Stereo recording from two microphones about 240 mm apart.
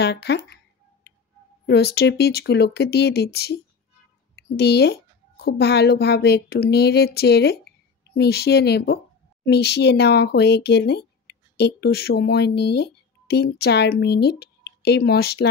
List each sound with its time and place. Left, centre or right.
0.0 s speech: left
1.7 s a woman's voice: left